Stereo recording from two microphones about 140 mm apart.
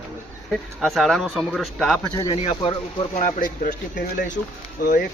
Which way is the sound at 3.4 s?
75° left (ahead or behind).